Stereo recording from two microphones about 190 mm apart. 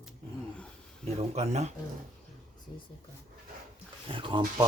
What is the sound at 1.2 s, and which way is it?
Speech, 35° right (ahead or behind).